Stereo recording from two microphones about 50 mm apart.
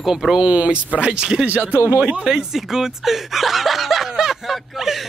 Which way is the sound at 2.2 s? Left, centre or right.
Centre.